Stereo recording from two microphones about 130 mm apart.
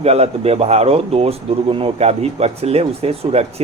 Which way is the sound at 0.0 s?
50° right (ahead or behind).